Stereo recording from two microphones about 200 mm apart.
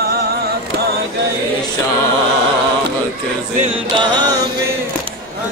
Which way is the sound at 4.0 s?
20° right (ahead or behind).